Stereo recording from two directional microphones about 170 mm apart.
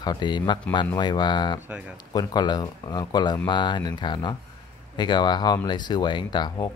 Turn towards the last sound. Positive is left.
turn(degrees=25)  # may be behind; listen again after turning